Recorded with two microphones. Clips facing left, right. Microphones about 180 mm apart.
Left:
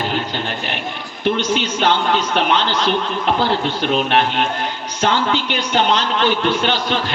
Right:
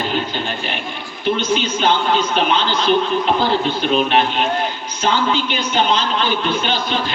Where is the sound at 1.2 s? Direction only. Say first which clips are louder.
Even; 75° left (ahead or behind).